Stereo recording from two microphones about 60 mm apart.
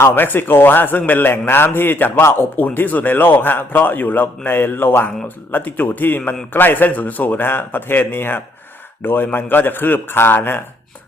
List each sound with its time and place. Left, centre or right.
0.1 s a man's voice: left